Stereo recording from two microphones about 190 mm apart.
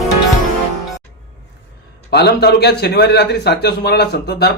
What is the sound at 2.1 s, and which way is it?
A man's voice, 55° left (ahead or behind).